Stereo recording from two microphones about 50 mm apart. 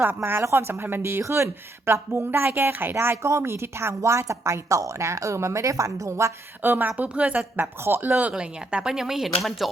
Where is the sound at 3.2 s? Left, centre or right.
Right.